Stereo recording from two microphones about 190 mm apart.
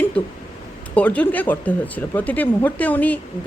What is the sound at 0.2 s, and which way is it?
A man's voice, 5° left (ahead or behind).